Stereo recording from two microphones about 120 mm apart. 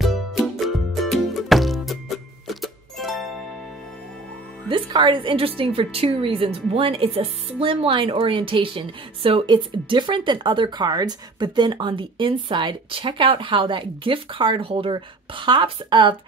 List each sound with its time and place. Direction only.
0.0 s music: centre (ahead or behind)
4.6 s a woman's voice: 40° right (ahead or behind)